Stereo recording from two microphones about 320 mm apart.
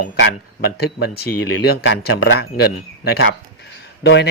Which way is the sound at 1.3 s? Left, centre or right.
Left.